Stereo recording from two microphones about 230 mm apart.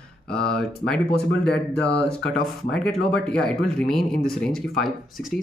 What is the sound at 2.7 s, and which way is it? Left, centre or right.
Speech, centre.